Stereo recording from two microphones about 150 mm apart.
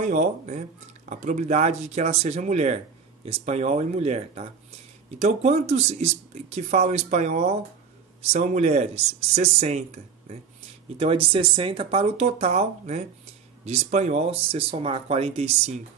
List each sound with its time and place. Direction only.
0.0 s speech: 55° right (ahead or behind)
11.0 s speech: 40° right (ahead or behind)